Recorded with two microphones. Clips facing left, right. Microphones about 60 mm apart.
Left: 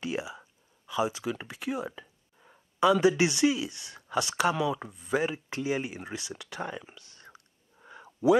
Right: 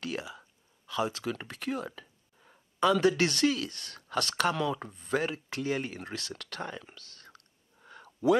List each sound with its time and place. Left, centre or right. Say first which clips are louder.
0.0 s speech: left 3 dB; centre